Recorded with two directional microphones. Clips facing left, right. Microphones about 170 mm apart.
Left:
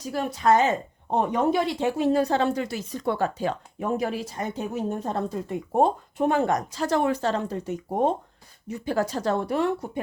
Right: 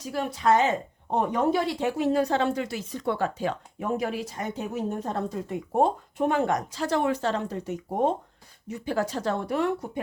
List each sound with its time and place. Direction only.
0.0 s speech: 40° left (ahead or behind)
1.1 s speech: 20° left (ahead or behind)